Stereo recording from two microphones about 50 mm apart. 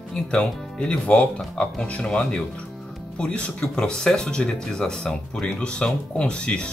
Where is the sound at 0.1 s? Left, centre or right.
Centre.